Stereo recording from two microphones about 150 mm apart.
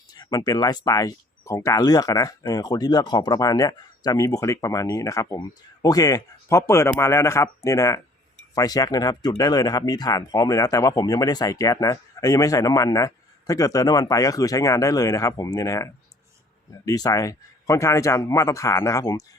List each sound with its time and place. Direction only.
0.1 s speech: 25° left (ahead or behind)